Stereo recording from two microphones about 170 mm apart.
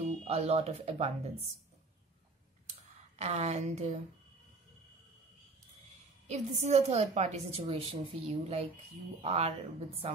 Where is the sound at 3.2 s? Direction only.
40° right (ahead or behind).